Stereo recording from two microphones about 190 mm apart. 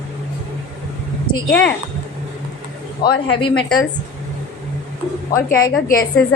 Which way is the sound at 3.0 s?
25° left (ahead or behind).